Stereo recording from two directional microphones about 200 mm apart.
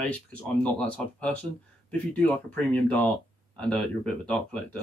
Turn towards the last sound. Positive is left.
turn(degrees=5)  # may be behind; listen again after turning